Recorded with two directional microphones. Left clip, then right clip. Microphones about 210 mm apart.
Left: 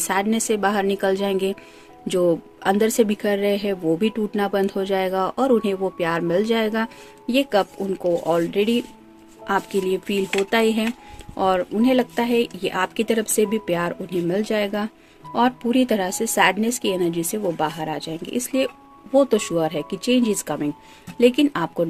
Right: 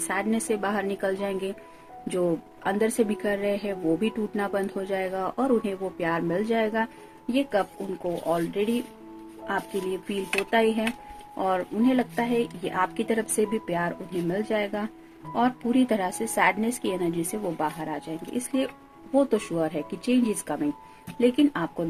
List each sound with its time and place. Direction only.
0.1 s speech: 45° left (ahead or behind)
10.1 s speech: 45° left (ahead or behind)